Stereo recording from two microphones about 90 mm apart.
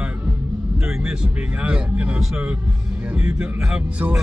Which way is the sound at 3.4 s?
10° right (ahead or behind).